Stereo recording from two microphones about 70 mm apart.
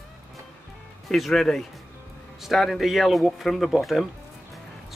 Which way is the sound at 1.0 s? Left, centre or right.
Centre.